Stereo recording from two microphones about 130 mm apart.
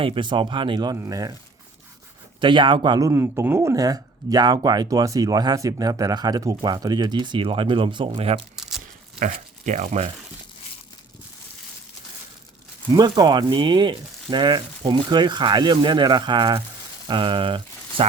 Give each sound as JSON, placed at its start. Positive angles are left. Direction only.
{"t": 0.0, "sound": "speech", "side_deg": -40}
{"t": 2.4, "sound": "speech", "side_deg": -40}
{"t": 9.2, "sound": "speech", "side_deg": -70}
{"t": 12.9, "sound": "speech", "side_deg": -30}